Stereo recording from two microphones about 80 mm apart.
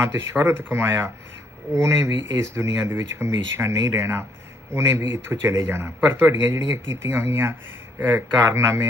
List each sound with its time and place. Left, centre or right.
0.0 s a man's voice: right
8.4 s a man's voice: right